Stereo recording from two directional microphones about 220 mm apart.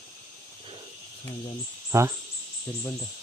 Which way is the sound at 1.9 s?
15° right (ahead or behind).